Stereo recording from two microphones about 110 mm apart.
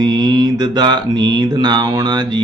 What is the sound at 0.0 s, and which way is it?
Mantra, 35° right (ahead or behind).